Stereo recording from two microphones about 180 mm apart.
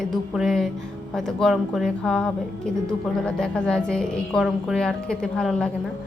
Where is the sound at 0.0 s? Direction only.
Centre (ahead or behind).